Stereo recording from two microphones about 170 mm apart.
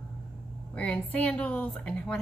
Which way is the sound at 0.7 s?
10° left (ahead or behind).